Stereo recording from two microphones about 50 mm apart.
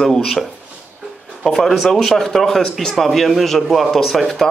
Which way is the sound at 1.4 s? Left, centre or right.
Centre.